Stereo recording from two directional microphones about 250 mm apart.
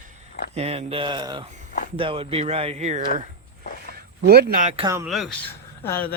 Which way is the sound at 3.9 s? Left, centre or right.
Right.